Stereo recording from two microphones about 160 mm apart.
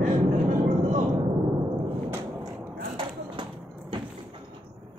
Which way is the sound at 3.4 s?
30° right (ahead or behind).